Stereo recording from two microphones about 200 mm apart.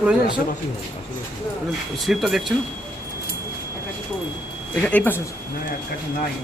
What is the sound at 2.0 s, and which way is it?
Speech, centre (ahead or behind).